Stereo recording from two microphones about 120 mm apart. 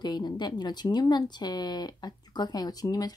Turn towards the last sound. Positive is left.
turn(degrees=35)  # may be behind; listen again after turning